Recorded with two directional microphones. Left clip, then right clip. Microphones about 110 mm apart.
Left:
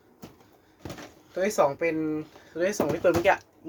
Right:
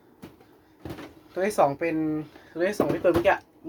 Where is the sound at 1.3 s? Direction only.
20° left (ahead or behind).